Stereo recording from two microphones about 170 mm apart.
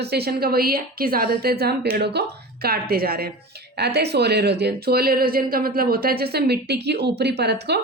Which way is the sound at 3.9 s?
75° right (ahead or behind).